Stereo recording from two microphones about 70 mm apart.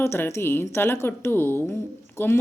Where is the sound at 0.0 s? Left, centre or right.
Left.